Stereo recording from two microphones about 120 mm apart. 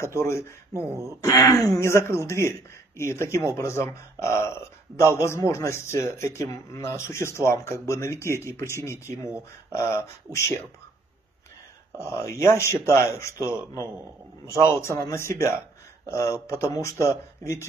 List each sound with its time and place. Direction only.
0.0 s speech: 25° left (ahead or behind)
0.7 s speech: 25° right (ahead or behind)
1.2 s speech: 25° left (ahead or behind)
12.0 s speech: 25° left (ahead or behind)